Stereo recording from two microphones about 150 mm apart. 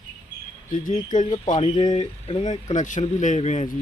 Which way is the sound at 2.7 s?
55° left (ahead or behind).